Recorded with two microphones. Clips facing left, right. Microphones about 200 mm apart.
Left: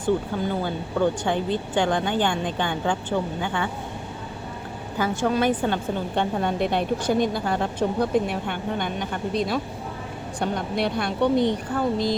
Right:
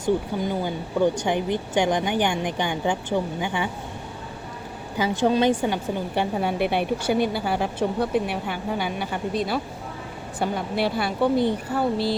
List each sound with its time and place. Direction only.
0.3 s a woman's voice: 15° right (ahead or behind)
4.9 s a woman's voice: 15° right (ahead or behind)
5.5 s a woman's voice: 10° right (ahead or behind)